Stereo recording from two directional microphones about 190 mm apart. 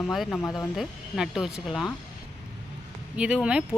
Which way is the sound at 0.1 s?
Centre (ahead or behind).